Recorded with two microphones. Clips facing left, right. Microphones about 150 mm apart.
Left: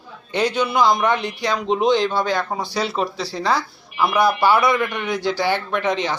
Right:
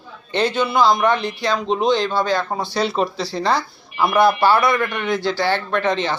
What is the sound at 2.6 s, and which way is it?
Speech, 10° left (ahead or behind).